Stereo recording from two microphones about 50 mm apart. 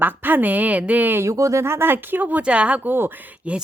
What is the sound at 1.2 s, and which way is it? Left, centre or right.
Speech, right.